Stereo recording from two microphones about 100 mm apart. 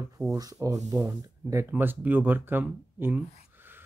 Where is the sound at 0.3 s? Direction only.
35° right (ahead or behind).